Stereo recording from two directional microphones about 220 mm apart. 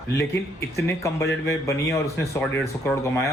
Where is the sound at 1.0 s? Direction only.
15° left (ahead or behind).